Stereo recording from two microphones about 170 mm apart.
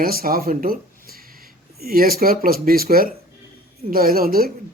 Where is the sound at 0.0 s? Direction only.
60° right (ahead or behind).